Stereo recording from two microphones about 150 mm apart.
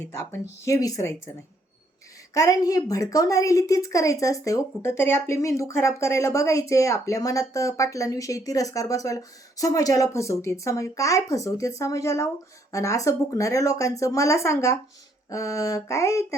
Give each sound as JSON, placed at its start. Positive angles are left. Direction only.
{"t": 0.0, "sound": "a woman's voice", "side_deg": 15}
{"t": 2.3, "sound": "a woman's voice", "side_deg": 25}